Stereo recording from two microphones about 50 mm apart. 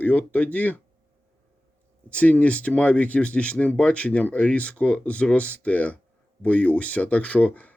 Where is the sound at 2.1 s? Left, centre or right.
Left.